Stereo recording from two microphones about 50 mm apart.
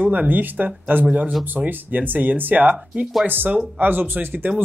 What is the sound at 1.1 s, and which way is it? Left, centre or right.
Speech, right.